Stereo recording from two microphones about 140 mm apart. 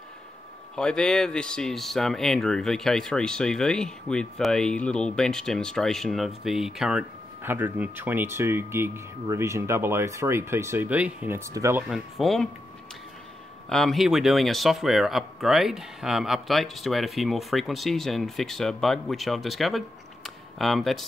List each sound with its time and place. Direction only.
0.7 s speech: 5° left (ahead or behind)
7.4 s speech: 15° right (ahead or behind)
11.9 s speech: centre (ahead or behind)
13.7 s speech: centre (ahead or behind)
20.2 s a sound: centre (ahead or behind)